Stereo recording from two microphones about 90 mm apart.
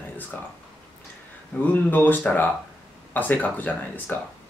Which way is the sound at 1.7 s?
20° left (ahead or behind).